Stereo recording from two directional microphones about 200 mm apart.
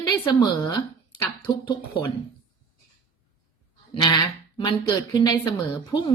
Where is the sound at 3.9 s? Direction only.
20° left (ahead or behind).